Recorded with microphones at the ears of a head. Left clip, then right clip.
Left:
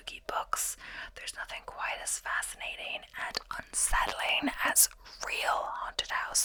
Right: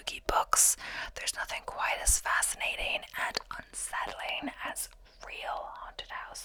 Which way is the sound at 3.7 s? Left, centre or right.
Left.